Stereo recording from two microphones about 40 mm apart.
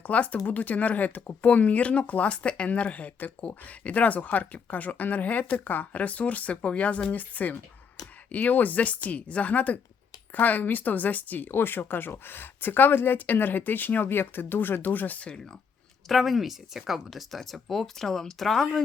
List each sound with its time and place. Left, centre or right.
0.0 s speech: left
14.8 s speech: left
16.0 s speech: centre